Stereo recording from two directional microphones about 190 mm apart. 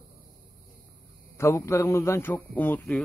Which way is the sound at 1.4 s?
15° left (ahead or behind).